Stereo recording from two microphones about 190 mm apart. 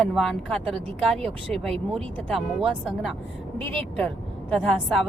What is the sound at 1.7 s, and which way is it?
Speech, 30° right (ahead or behind).